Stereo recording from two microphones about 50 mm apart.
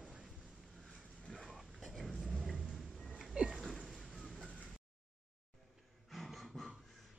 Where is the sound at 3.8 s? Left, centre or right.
Centre.